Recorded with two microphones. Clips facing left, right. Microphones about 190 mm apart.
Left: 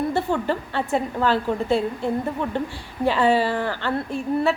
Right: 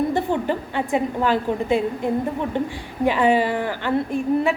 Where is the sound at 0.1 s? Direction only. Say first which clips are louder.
Right 1 dB; 15° right (ahead or behind).